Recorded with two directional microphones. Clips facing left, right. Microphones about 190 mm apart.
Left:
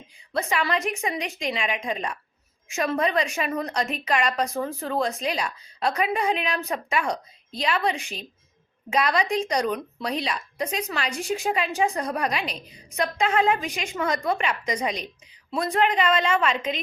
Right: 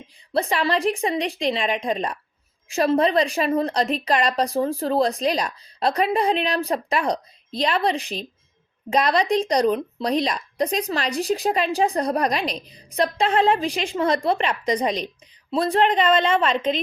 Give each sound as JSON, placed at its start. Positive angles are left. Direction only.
{"t": 0.3, "sound": "a woman's voice", "side_deg": -35}